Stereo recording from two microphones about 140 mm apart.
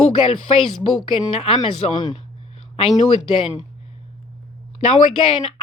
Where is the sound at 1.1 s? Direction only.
40° left (ahead or behind).